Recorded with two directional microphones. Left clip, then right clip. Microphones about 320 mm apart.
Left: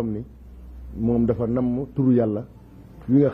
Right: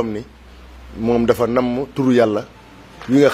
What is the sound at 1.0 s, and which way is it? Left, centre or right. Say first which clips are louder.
A man's voice: right 7 dB; centre.